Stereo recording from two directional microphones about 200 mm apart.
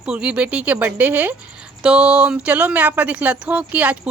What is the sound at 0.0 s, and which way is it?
Speech, 5° right (ahead or behind).